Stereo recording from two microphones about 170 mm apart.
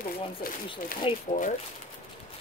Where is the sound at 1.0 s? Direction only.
30° left (ahead or behind).